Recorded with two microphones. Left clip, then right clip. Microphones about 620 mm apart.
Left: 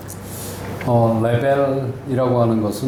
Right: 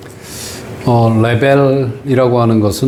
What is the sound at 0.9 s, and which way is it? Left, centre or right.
Speech, right.